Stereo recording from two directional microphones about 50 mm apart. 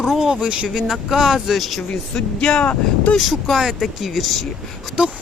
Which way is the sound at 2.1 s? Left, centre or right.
Centre.